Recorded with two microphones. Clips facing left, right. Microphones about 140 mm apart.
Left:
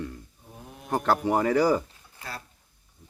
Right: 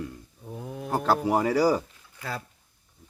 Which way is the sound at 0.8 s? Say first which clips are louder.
Even; 5° right (ahead or behind).